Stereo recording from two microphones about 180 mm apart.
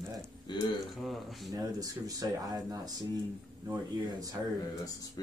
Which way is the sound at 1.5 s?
20° right (ahead or behind).